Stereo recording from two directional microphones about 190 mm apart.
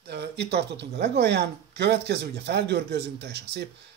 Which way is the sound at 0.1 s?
60° right (ahead or behind).